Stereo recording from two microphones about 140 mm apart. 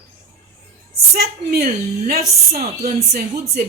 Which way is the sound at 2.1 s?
85° right.